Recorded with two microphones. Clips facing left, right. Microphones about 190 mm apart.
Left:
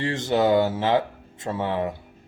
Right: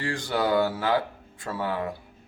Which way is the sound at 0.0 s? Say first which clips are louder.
Left 5 dB; 25° left (ahead or behind).